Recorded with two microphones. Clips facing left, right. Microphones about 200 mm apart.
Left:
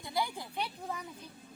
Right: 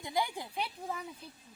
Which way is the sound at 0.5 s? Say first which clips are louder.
Even; 5° right (ahead or behind).